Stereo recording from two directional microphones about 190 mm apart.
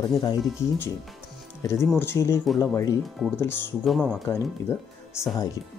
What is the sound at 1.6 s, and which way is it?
Speech, 15° left (ahead or behind).